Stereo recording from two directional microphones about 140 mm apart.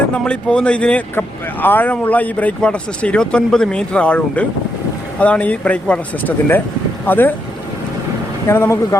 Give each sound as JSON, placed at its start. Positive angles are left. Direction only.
{"t": 0.1, "sound": "speech", "side_deg": 5}
{"t": 8.4, "sound": "speech", "side_deg": 20}